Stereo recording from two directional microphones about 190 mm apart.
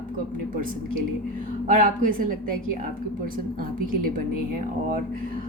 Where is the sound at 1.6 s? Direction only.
45° right (ahead or behind).